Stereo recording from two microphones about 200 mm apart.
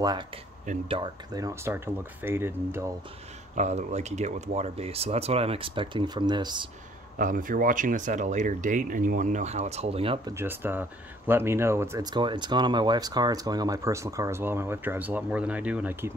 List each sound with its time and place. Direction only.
0.8 s speech: 25° right (ahead or behind)
3.5 s speech: 35° right (ahead or behind)
7.2 s speech: 40° right (ahead or behind)
10.3 s speech: 10° right (ahead or behind)